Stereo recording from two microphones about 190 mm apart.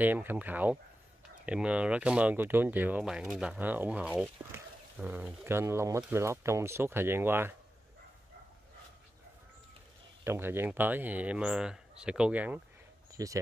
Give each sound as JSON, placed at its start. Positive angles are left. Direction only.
{"t": 0.0, "sound": "speech", "side_deg": -10}
{"t": 10.2, "sound": "speech", "side_deg": -10}